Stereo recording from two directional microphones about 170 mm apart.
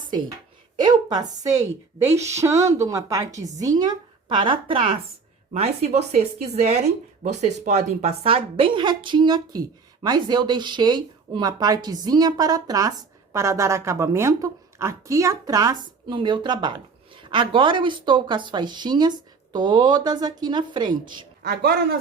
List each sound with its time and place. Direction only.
0.8 s a woman's voice: 25° right (ahead or behind)
21.0 s speech: 70° right (ahead or behind)